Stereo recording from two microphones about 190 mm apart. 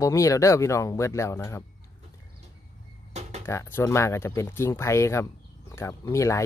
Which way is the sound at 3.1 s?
35° right (ahead or behind).